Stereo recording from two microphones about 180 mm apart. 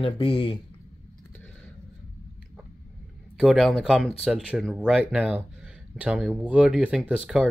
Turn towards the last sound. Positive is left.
turn(degrees=-5)  # may be behind; listen again after turning